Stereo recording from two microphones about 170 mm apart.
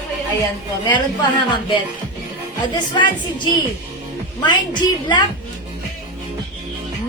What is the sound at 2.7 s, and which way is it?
A woman's voice, 25° left (ahead or behind).